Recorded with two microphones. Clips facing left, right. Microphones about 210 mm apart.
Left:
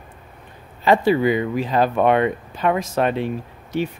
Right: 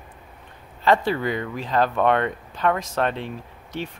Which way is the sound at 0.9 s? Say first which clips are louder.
Left 5 dB; 10° left (ahead or behind).